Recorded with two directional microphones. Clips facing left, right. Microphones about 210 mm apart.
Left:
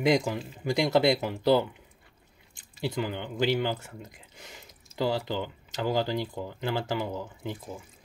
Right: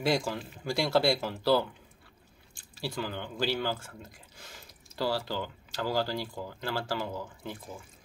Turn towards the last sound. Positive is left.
turn(degrees=20)  # may be behind; listen again after turning